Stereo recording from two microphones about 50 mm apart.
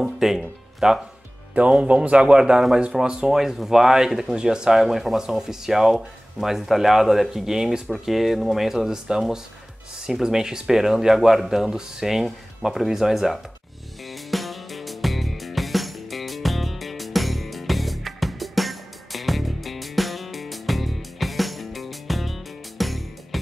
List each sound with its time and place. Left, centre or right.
0.0 s music: centre
0.4 s speech: centre
14.3 s music: centre